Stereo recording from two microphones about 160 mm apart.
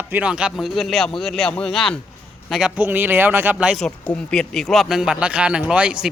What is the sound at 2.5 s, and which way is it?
A man's voice, 5° right (ahead or behind).